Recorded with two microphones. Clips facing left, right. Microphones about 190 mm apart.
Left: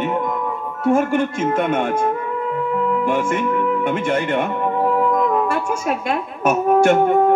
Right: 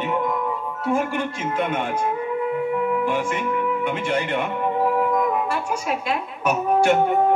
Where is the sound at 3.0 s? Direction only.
50° left (ahead or behind).